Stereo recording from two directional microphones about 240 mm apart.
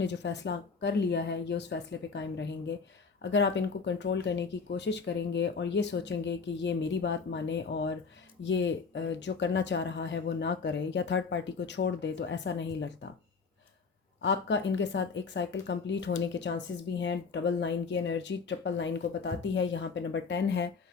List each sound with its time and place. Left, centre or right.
0.0 s speech: left
14.2 s speech: left